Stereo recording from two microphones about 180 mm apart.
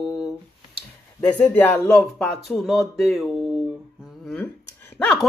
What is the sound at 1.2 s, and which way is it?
Speech, 10° left (ahead or behind).